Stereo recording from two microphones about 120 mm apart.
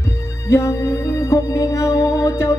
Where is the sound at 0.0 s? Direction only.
25° left (ahead or behind).